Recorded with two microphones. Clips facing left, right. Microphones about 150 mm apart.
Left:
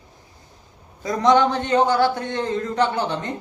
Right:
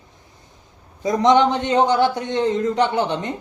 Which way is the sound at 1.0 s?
20° right (ahead or behind).